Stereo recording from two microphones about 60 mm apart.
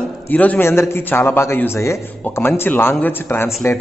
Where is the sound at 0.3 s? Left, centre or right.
Left.